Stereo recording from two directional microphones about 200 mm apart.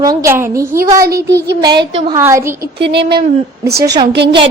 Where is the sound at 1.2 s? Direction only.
60° right (ahead or behind).